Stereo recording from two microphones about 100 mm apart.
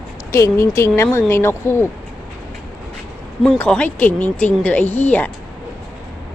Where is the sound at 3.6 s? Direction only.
15° left (ahead or behind).